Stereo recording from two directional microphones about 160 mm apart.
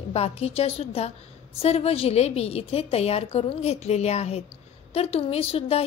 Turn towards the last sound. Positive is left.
turn(degrees=40)  # may be behind; listen again after turning